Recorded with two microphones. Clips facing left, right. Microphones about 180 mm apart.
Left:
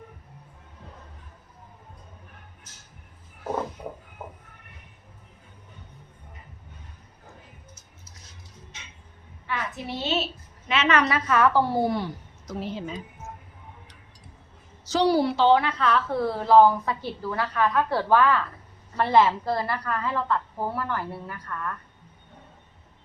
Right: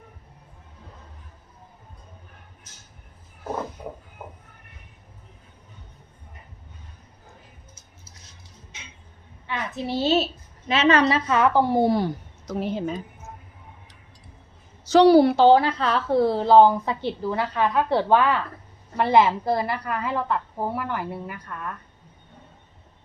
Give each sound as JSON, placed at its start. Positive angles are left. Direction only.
{"t": 9.5, "sound": "a woman's voice", "side_deg": -25}
{"t": 11.9, "sound": "a woman's voice", "side_deg": -40}
{"t": 12.5, "sound": "a woman's voice", "side_deg": -55}
{"t": 14.8, "sound": "a woman's voice", "side_deg": -65}